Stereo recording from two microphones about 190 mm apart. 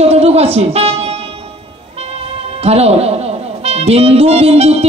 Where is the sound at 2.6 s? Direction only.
35° right (ahead or behind).